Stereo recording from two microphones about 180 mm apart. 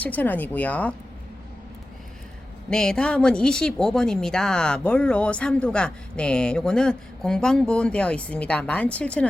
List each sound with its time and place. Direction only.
0.0 s speech: 10° left (ahead or behind)
2.6 s speech: 5° left (ahead or behind)